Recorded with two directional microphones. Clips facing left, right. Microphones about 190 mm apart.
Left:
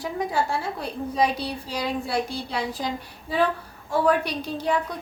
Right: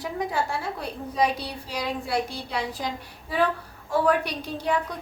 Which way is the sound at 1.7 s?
30° left (ahead or behind).